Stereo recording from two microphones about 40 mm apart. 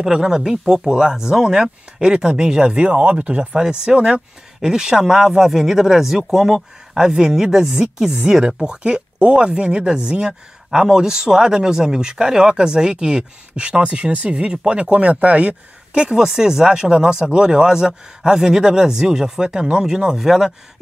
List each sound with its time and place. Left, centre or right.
0.0 s speech: centre
2.9 s speech: right
3.5 s speech: centre